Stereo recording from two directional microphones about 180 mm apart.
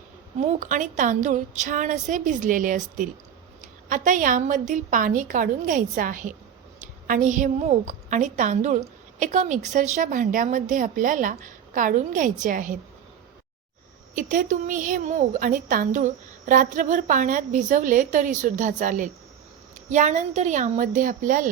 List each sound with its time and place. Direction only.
0.4 s a woman's voice: 45° right (ahead or behind)
14.2 s a woman's voice: 45° right (ahead or behind)